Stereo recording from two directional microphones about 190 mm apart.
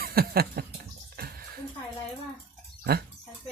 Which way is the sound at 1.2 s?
50° right (ahead or behind).